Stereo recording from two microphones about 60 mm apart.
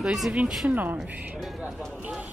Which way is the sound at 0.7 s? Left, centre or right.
Right.